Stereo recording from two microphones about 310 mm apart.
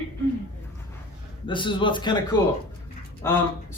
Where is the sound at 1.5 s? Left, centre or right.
Centre.